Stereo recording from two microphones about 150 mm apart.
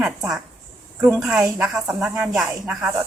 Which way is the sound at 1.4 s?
15° right (ahead or behind).